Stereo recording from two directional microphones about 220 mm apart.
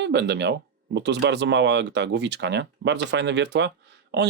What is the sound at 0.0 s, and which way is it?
Speech, 50° right (ahead or behind).